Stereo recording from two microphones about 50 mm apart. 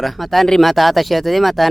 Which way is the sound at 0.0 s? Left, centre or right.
Centre.